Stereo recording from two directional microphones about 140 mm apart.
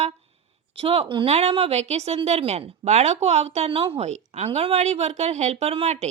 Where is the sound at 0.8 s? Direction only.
45° right (ahead or behind).